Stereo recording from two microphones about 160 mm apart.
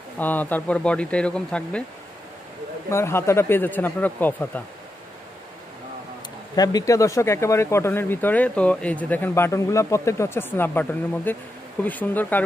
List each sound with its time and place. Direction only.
0.2 s speech: 10° left (ahead or behind)
2.9 s speech: 15° left (ahead or behind)
6.5 s speech: 25° left (ahead or behind)